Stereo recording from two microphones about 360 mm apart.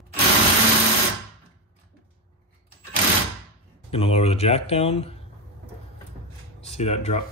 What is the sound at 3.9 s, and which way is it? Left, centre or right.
Speech, centre.